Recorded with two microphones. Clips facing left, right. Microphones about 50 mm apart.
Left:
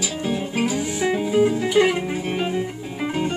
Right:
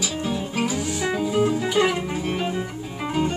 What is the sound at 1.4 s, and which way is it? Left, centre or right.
Music, centre.